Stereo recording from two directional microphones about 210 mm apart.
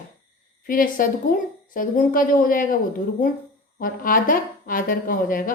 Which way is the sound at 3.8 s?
40° left (ahead or behind).